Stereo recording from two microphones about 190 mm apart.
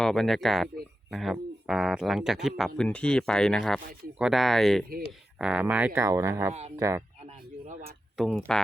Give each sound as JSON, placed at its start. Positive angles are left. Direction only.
{"t": 0.0, "sound": "speech", "side_deg": 0}
{"t": 7.7, "sound": "a sound", "side_deg": -40}
{"t": 8.1, "sound": "speech", "side_deg": 0}